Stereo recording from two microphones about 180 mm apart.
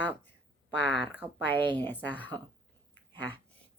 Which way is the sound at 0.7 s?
75° left (ahead or behind).